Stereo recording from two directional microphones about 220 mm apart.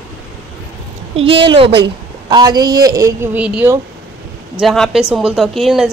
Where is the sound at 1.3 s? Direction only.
25° right (ahead or behind); by 5.9 s centre (ahead or behind).